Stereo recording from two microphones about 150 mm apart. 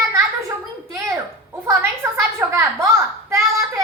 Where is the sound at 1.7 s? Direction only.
20° right (ahead or behind).